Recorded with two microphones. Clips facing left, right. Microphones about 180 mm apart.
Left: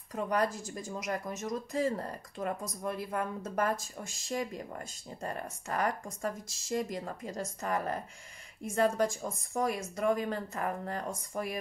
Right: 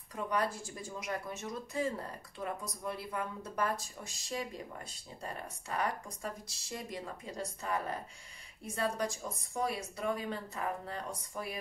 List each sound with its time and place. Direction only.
0.1 s speech: 45° left (ahead or behind)